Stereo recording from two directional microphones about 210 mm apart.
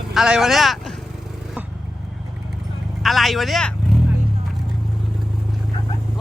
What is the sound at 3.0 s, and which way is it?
Vehicle, centre (ahead or behind).